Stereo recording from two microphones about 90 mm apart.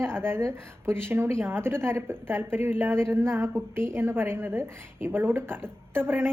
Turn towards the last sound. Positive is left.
turn(degrees=-25)  # may be behind; listen again after turning